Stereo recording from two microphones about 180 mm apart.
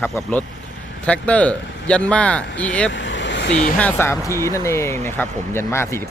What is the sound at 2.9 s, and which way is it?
Vehicle, 90° left.